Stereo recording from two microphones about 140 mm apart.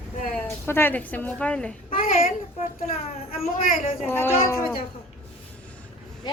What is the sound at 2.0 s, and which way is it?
Child singing, 90° left.